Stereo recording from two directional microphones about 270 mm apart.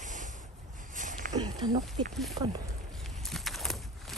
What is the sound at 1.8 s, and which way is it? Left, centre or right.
Speech, centre.